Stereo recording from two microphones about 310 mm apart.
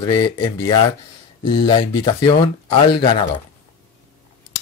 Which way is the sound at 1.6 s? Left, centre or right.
Centre.